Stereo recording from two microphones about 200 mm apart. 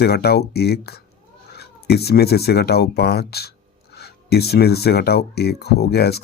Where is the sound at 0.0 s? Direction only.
55° left (ahead or behind).